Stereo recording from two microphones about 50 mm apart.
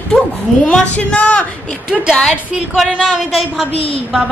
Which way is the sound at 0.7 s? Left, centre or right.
Left.